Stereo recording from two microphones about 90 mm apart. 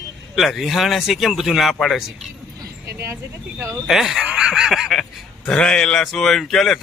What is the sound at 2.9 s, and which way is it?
Speech, 35° right (ahead or behind).